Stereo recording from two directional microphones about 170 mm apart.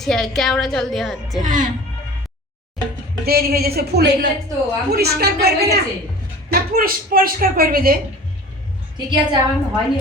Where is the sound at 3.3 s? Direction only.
65° right (ahead or behind); by 4.3 s 80° right.